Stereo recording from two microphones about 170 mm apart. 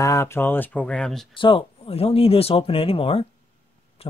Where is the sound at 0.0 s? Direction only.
20° left (ahead or behind).